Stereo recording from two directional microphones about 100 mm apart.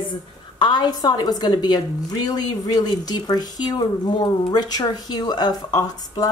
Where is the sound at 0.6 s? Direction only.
50° left (ahead or behind).